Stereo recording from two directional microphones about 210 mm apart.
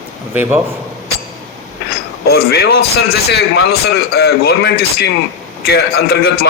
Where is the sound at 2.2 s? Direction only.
50° left (ahead or behind).